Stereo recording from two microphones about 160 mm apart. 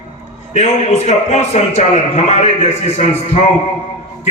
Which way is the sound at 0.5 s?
45° left (ahead or behind).